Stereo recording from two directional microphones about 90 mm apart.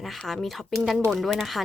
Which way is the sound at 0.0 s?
Centre (ahead or behind).